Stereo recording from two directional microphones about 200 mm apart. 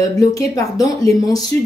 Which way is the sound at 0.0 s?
15° left (ahead or behind).